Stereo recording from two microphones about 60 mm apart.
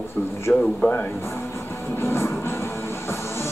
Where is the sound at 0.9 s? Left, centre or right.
Left.